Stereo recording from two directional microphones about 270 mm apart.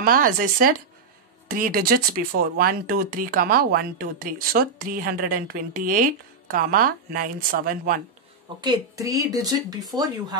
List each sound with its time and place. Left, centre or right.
0.0 s speech: right
8.5 s speech: centre